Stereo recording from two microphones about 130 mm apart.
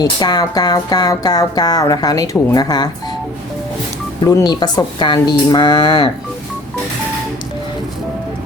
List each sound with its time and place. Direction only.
0.0 s speech: 30° left (ahead or behind)
4.3 s speech: 30° left (ahead or behind)